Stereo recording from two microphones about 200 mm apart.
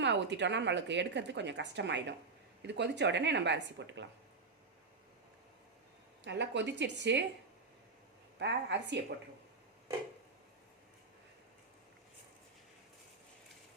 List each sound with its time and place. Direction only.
0.0 s a woman's voice: 60° right (ahead or behind)
6.2 s a woman's voice: 60° right (ahead or behind)
8.4 s a woman's voice: 60° right (ahead or behind)